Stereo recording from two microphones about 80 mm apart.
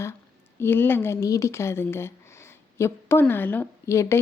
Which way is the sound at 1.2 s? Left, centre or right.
Left.